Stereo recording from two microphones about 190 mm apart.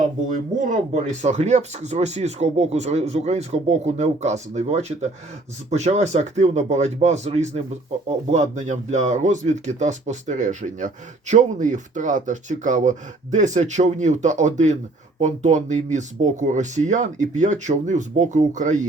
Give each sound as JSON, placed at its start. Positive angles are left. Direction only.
{"t": 0.3, "sound": "speech", "side_deg": -40}